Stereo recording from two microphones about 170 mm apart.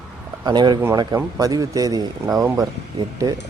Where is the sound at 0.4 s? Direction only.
25° right (ahead or behind).